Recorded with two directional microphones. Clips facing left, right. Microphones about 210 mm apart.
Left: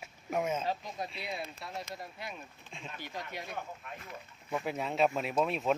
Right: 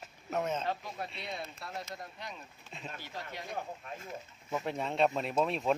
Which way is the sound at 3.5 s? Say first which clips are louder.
Right 2 dB; 25° right (ahead or behind).